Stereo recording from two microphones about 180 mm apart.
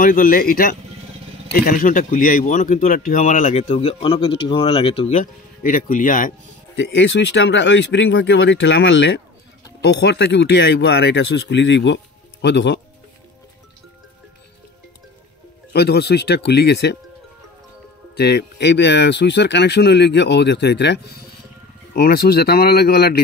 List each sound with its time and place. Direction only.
0.0 s speech: 55° left (ahead or behind)
3.5 s speech: 30° left (ahead or behind)
5.1 s speech: 50° left (ahead or behind)
6.8 s speech: 80° left
9.8 s speech: 65° left (ahead or behind)
15.7 s speech: 65° left (ahead or behind)
18.1 s speech: 65° left (ahead or behind)